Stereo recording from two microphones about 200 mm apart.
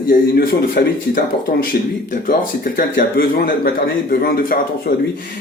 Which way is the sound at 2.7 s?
45° left (ahead or behind).